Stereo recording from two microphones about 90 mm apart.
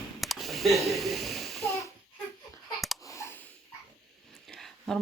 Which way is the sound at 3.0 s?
35° left (ahead or behind).